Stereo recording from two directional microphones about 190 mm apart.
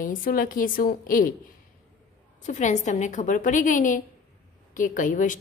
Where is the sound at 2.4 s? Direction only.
40° left (ahead or behind).